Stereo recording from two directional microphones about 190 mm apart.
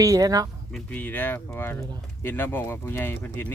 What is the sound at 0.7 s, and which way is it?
Speech, 5° left (ahead or behind).